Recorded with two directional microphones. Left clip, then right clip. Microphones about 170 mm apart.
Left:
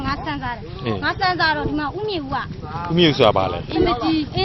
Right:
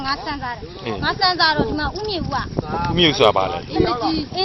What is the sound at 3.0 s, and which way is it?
Speech, 5° left (ahead or behind).